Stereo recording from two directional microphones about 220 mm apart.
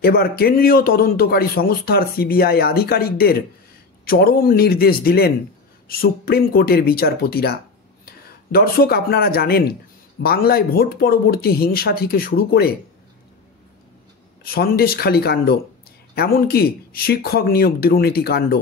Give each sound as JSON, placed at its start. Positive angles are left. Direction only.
{"t": 0.0, "sound": "speech", "side_deg": 45}
{"t": 14.4, "sound": "speech", "side_deg": 45}